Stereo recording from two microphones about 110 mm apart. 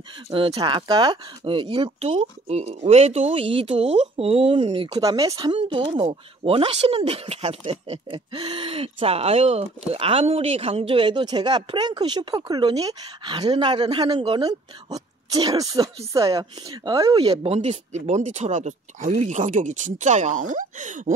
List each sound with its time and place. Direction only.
0.3 s speech: 55° right (ahead or behind)
4.8 s speech: 35° right (ahead or behind)
6.0 s speech: 60° right (ahead or behind); by 17.2 s 35° right (ahead or behind)
17.2 s speech: 65° right (ahead or behind); by 20.3 s 90° right